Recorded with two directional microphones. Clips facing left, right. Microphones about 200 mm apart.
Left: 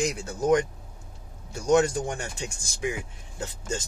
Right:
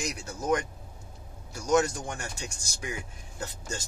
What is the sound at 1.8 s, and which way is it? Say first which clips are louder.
Speech: left 5 dB; 30° left (ahead or behind).